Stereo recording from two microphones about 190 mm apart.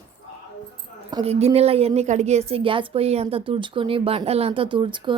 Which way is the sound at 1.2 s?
35° right (ahead or behind).